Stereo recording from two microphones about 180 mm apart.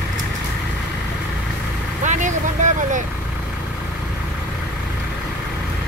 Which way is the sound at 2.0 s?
45° right (ahead or behind).